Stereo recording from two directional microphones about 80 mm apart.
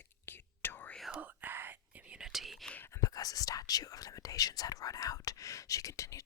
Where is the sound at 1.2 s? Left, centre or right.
Right.